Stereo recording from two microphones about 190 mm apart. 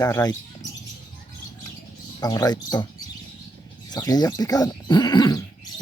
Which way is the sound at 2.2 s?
20° left (ahead or behind).